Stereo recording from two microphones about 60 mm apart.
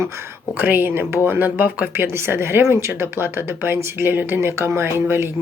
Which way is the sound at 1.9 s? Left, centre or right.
Right.